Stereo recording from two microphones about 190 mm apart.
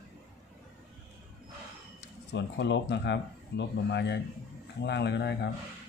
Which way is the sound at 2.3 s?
65° left (ahead or behind).